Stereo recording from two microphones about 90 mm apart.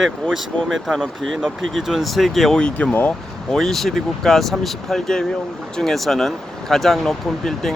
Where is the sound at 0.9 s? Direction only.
5° left (ahead or behind).